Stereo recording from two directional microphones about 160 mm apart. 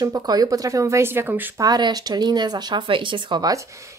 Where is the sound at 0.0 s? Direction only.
25° right (ahead or behind).